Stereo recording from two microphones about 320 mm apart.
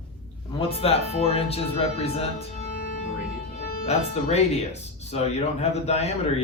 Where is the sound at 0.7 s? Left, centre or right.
Centre.